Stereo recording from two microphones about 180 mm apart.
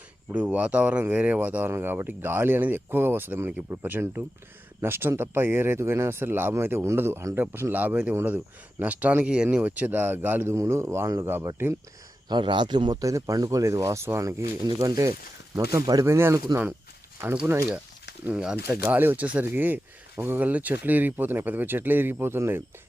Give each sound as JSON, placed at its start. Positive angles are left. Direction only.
{"t": 0.3, "sound": "speech", "side_deg": -10}
{"t": 12.3, "sound": "speech", "side_deg": -25}